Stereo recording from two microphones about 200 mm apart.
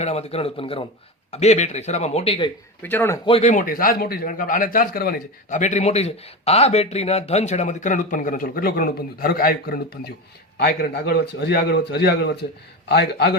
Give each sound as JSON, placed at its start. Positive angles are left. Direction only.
{"t": 0.0, "sound": "a man's voice", "side_deg": 30}
{"t": 2.8, "sound": "speech", "side_deg": 10}
{"t": 3.2, "sound": "a man's voice", "side_deg": 30}